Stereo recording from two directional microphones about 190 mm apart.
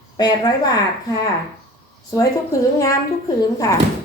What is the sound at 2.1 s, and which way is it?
Speech, 15° left (ahead or behind).